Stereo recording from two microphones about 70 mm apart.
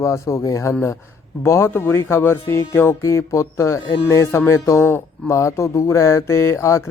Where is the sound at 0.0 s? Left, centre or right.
Left.